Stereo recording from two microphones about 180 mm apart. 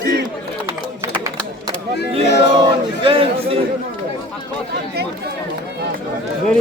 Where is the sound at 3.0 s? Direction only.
30° right (ahead or behind).